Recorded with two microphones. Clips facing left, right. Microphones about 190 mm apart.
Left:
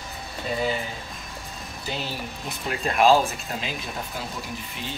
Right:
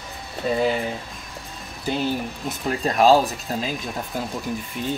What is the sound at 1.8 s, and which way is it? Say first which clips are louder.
Speech: right 9 dB; 50° right (ahead or behind).